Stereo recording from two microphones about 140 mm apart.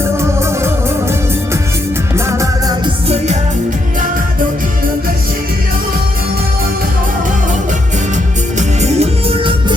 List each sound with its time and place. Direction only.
0.2 s music: 20° right (ahead or behind)
2.1 s music: 20° right (ahead or behind)
8.5 s music: 55° right (ahead or behind)